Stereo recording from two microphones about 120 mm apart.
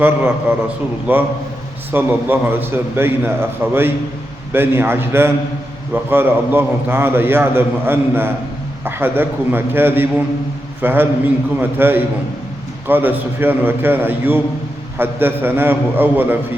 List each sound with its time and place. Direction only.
0.0 s a man's voice: 15° right (ahead or behind)